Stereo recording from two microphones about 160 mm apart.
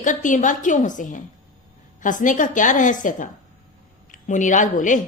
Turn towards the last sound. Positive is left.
turn(degrees=55)  # may be behind; listen again after turning